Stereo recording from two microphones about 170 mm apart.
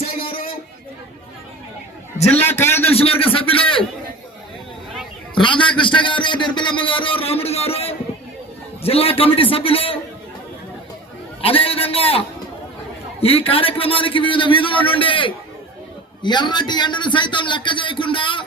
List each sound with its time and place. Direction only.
2.3 s a man's voice: 10° left (ahead or behind)
2.8 s a man's voice: 35° left (ahead or behind)
5.3 s a man's voice: 30° left (ahead or behind)
11.4 s a man's voice: 35° left (ahead or behind)
13.2 s a man's voice: 35° left (ahead or behind)